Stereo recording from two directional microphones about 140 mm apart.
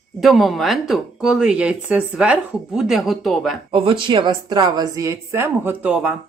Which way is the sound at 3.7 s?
35° right (ahead or behind).